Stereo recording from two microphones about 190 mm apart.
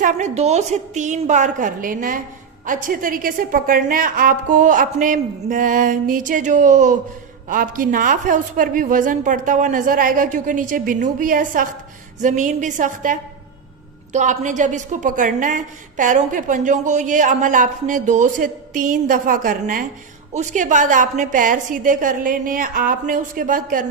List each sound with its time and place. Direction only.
0.0 s a woman's voice: 35° right (ahead or behind)